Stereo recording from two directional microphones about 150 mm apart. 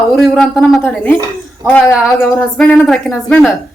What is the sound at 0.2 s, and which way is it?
A woman's voice, centre (ahead or behind).